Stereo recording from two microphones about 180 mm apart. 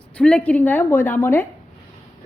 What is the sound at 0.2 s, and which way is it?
A woman's voice, 5° left (ahead or behind).